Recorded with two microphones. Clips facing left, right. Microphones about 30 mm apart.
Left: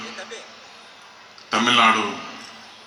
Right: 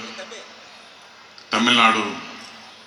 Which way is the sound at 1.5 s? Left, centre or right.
Centre.